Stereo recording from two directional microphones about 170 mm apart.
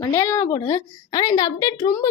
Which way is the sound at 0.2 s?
15° left (ahead or behind).